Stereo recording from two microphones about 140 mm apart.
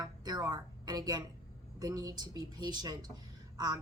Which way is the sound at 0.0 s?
30° right (ahead or behind).